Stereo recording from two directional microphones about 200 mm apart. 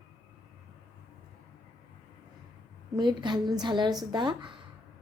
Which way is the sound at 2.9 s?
20° right (ahead or behind).